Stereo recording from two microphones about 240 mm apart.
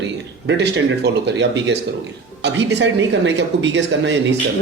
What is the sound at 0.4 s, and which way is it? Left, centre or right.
A man's voice, right.